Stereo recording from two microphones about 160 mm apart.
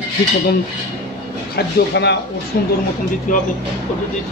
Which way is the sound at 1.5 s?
90° left.